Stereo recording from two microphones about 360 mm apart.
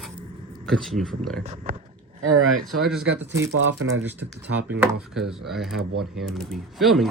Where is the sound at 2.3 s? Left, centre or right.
Right.